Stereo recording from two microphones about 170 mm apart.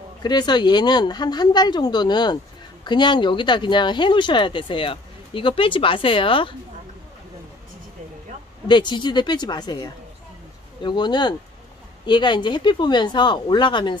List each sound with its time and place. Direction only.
0.2 s speech: 25° left (ahead or behind)
8.6 s speech: 25° left (ahead or behind)